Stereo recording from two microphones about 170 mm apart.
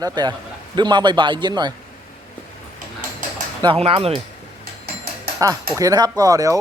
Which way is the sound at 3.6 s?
30° right (ahead or behind).